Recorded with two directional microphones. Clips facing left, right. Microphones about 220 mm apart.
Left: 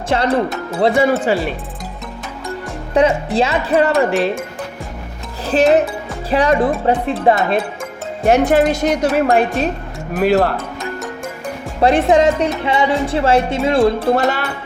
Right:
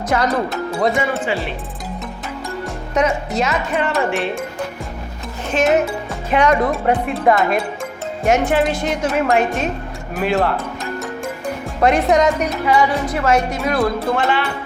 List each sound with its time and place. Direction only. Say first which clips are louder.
0.1 s speech: left 3 dB; 30° left (ahead or behind)
2.9 s speech: left 4 dB; 30° left (ahead or behind)
5.5 s speech: left 3 dB; 35° left (ahead or behind)
11.8 s speech: left 2 dB; 30° left (ahead or behind)
14.2 s speech: left 1 dB; 40° left (ahead or behind)